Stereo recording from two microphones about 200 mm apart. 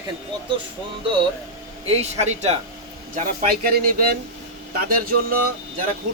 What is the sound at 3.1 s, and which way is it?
Speech, 50° right (ahead or behind).